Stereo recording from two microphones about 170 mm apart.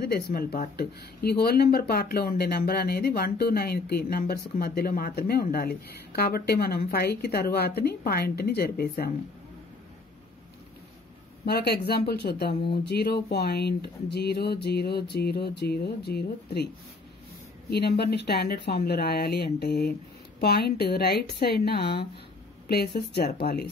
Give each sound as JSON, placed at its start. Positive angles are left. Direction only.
{"t": 0.0, "sound": "speech", "side_deg": 65}
{"t": 11.4, "sound": "speech", "side_deg": 70}
{"t": 17.6, "sound": "speech", "side_deg": 70}